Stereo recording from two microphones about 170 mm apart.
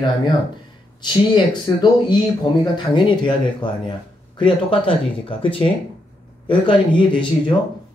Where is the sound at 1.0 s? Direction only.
25° left (ahead or behind).